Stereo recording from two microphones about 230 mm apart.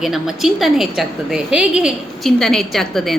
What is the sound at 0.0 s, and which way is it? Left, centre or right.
A woman's voice, centre.